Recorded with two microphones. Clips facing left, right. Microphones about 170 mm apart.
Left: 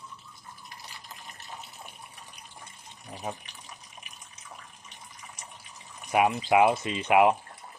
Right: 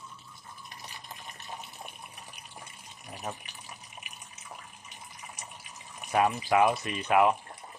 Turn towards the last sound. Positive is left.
turn(degrees=20)  # may be behind; listen again after turning